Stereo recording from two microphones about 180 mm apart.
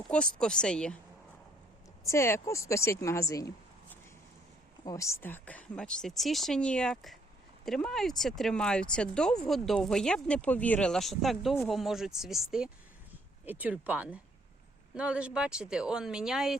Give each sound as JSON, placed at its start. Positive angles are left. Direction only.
{"t": 0.3, "sound": "speech", "side_deg": 5}
{"t": 2.0, "sound": "speech", "side_deg": 15}